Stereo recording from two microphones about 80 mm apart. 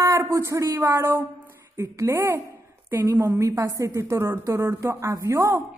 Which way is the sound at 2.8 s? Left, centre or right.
Right.